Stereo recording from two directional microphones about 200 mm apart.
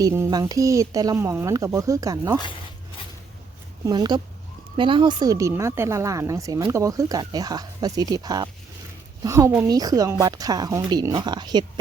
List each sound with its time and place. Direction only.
0.0 s speech: 15° right (ahead or behind)
3.8 s a woman's voice: 20° right (ahead or behind)